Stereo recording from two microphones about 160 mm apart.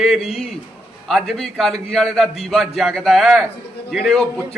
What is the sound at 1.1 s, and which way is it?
A man's voice, centre (ahead or behind).